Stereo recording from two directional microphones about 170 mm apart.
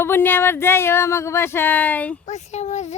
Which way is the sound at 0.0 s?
10° left (ahead or behind).